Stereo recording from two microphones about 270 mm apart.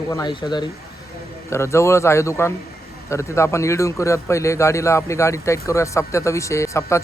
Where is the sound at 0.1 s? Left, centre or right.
Centre.